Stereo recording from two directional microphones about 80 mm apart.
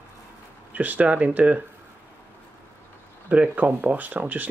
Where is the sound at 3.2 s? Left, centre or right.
Centre.